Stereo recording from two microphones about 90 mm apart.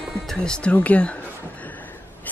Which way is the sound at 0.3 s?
10° left (ahead or behind).